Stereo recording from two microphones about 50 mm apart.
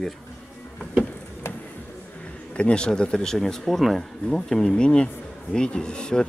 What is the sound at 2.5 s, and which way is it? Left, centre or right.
Speech, left.